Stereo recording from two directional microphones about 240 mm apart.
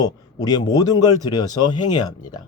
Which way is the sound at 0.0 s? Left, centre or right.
Centre.